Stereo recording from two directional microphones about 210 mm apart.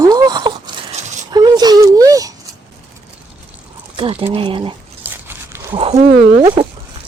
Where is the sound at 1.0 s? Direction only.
35° right (ahead or behind).